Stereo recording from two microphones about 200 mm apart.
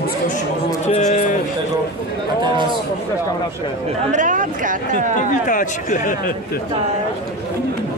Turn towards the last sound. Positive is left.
turn(degrees=40)  # may be behind; listen again after turning